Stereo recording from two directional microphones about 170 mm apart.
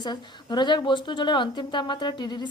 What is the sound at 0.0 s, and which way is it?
A woman's voice, 25° left (ahead or behind).